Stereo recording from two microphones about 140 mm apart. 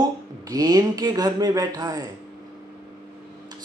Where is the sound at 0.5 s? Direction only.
25° right (ahead or behind).